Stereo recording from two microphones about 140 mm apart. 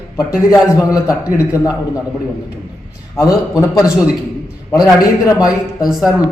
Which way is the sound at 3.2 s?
25° left (ahead or behind).